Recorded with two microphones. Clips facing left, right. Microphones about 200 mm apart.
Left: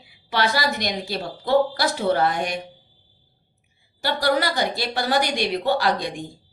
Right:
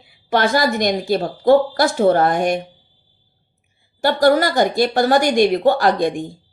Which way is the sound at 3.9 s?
50° right (ahead or behind).